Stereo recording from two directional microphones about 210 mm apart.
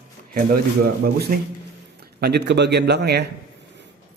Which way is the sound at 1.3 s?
45° right (ahead or behind).